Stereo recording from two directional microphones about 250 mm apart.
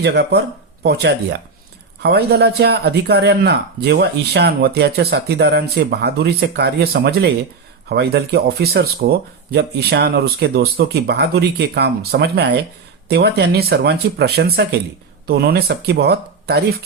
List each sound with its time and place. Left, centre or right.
0.0 s speech: right